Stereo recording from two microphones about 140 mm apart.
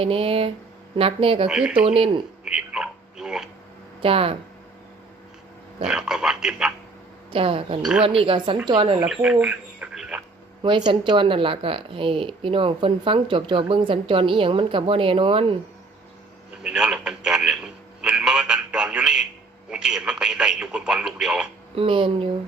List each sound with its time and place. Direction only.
0.0 s speech: 40° right (ahead or behind)
1.5 s speech: 5° right (ahead or behind)
1.8 s speech: 40° right (ahead or behind)
2.4 s a sound: 5° right (ahead or behind)
4.0 s speech: 40° right (ahead or behind)
5.8 s speech: 5° right (ahead or behind)
7.3 s speech: 40° right (ahead or behind)
7.8 s speech: 5° right (ahead or behind)
8.0 s speech: 40° right (ahead or behind)
9.0 s speech: 5° right (ahead or behind)
10.6 s speech: 35° right (ahead or behind)
16.6 s radio: 5° right (ahead or behind)
19.7 s speech: 5° right (ahead or behind)
21.8 s speech: 35° right (ahead or behind)